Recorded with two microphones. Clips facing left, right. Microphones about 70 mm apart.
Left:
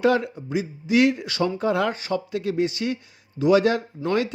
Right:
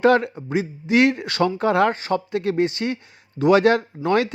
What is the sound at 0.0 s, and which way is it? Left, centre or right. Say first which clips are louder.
Speech: right 4 dB; right.